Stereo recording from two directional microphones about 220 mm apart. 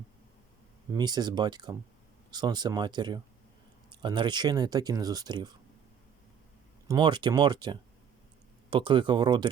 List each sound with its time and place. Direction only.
0.9 s speech: 20° right (ahead or behind)
6.8 s speech: 20° right (ahead or behind)